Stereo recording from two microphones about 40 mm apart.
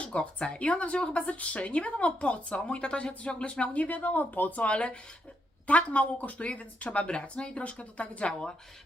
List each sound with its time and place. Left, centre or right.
0.0 s speech: left
3.8 s speech: left
4.6 s speech: left
8.3 s a woman's voice: centre